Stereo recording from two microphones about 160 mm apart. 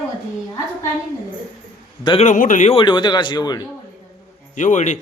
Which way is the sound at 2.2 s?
55° left (ahead or behind).